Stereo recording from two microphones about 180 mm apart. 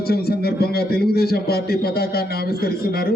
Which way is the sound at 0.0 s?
60° left (ahead or behind).